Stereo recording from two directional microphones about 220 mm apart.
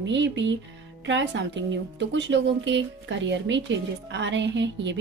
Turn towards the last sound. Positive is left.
turn(degrees=-55)  # may be behind; listen again after turning